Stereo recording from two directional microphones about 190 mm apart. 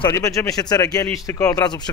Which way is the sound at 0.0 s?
15° left (ahead or behind).